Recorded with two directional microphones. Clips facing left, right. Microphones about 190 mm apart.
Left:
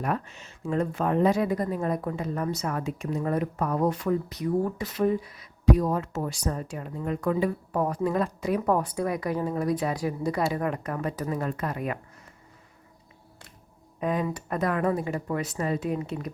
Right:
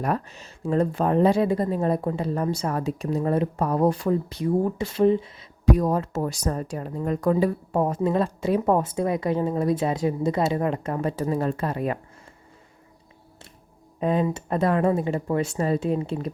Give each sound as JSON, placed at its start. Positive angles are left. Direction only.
{"t": 0.0, "sound": "speech", "side_deg": -35}
{"t": 5.6, "sound": "speech", "side_deg": -45}
{"t": 14.0, "sound": "speech", "side_deg": -30}